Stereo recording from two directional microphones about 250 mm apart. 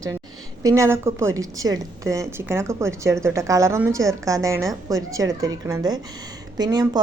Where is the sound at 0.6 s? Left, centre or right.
Centre.